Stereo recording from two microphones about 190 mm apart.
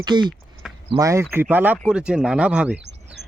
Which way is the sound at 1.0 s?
15° right (ahead or behind).